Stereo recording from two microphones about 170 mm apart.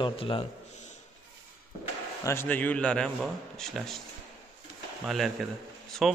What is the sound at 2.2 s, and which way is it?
A man's voice, 15° left (ahead or behind).